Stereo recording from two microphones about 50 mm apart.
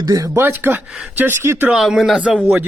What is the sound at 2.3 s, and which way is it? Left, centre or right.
Speech, centre.